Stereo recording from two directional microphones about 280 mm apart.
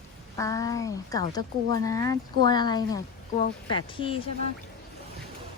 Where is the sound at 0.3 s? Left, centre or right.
Centre.